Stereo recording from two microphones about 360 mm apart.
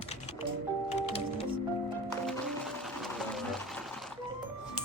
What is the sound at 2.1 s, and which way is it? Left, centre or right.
Music, centre.